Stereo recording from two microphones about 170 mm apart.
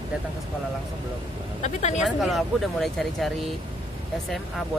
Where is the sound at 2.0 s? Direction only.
Centre (ahead or behind).